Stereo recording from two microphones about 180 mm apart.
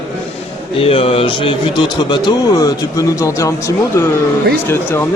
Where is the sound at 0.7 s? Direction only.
30° left (ahead or behind); by 4.1 s 15° left (ahead or behind).